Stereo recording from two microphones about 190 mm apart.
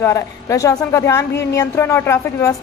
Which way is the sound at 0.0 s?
15° left (ahead or behind).